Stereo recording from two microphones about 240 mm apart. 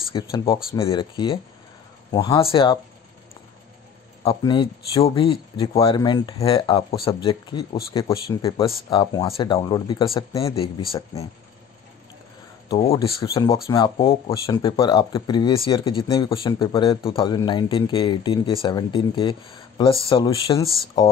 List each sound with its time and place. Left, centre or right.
0.1 s speech: centre
4.2 s speech: left
12.7 s speech: left